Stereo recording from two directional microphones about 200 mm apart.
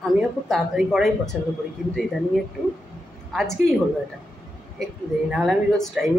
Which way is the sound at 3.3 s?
Centre (ahead or behind).